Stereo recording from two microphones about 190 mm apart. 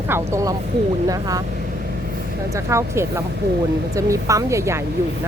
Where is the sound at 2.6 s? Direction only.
15° right (ahead or behind).